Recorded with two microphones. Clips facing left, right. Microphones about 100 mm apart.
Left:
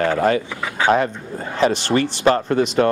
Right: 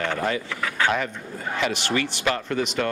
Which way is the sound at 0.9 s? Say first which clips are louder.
Left 8 dB; 35° left (ahead or behind).